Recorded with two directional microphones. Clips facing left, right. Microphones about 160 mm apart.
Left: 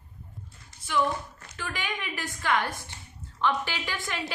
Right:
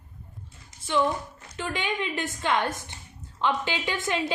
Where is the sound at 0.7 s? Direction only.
20° right (ahead or behind).